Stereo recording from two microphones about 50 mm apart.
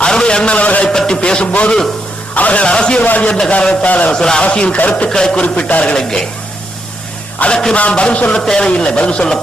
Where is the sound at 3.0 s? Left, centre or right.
Left.